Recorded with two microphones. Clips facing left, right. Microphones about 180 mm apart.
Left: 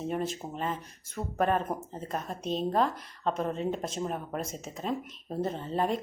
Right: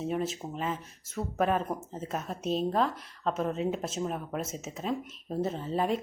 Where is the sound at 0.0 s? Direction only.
Centre (ahead or behind).